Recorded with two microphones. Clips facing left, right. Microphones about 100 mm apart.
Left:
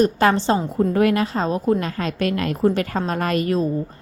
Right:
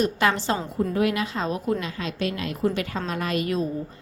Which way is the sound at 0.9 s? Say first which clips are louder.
Left 5 dB; 45° left (ahead or behind).